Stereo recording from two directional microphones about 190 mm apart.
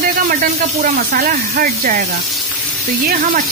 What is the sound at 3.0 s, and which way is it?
Speech, 50° right (ahead or behind).